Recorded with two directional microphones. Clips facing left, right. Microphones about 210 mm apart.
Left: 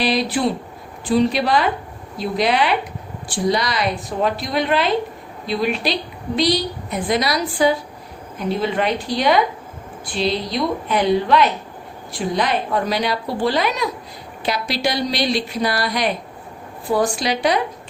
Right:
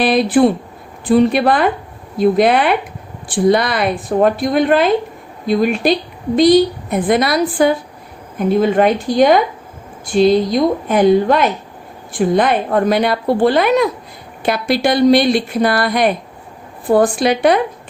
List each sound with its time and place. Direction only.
0.0 s a woman's voice: 55° right (ahead or behind)